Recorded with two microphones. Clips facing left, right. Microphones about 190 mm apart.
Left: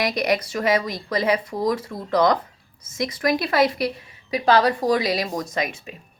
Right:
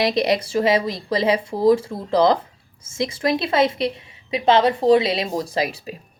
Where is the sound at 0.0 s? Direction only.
25° right (ahead or behind).